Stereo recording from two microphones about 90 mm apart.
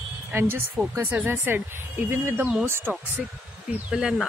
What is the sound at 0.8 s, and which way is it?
Speech, 40° right (ahead or behind).